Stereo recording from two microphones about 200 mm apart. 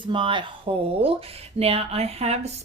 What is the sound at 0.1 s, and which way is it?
A woman's voice, 25° right (ahead or behind).